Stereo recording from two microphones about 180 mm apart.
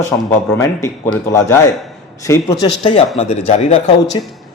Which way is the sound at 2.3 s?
15° left (ahead or behind).